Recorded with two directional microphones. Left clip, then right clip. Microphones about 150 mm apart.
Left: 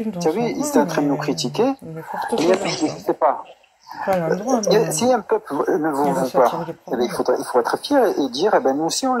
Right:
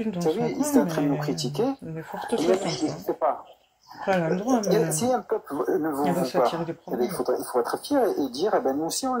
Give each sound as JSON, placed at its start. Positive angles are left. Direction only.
{"t": 0.1, "sound": "speech", "side_deg": 35}